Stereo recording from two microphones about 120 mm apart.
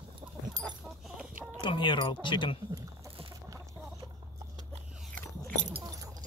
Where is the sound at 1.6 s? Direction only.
45° left (ahead or behind).